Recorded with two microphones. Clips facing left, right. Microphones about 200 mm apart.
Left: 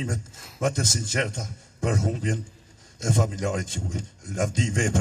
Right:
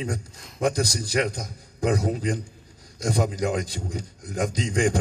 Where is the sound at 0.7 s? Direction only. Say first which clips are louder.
Right 3 dB; 35° right (ahead or behind).